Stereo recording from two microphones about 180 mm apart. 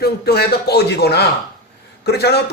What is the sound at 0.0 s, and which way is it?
Speech, 60° left (ahead or behind).